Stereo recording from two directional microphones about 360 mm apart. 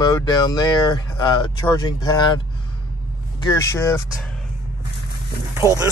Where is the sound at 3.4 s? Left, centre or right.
Centre.